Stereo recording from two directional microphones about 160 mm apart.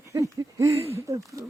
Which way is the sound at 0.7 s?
40° right (ahead or behind).